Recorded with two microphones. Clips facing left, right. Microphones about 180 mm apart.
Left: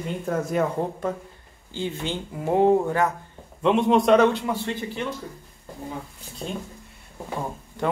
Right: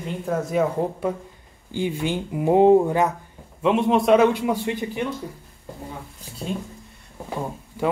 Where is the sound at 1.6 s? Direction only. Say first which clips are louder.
Right 4 dB; 15° right (ahead or behind).